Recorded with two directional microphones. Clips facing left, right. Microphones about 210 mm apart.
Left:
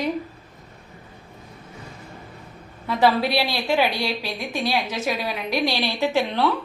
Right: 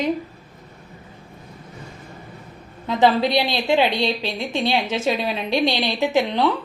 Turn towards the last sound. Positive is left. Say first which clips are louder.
# right 2 dB
turn(degrees=-15)  # may be behind; listen again after turning